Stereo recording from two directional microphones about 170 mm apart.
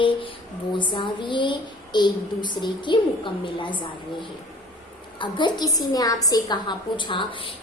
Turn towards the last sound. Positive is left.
turn(degrees=30)  # may be behind; listen again after turning